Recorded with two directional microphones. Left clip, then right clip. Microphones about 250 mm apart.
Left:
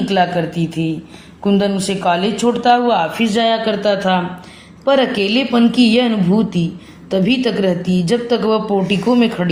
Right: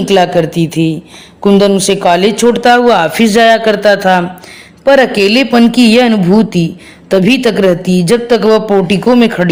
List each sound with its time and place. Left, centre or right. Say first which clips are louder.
0.1 s a man's voice: right 8 dB; right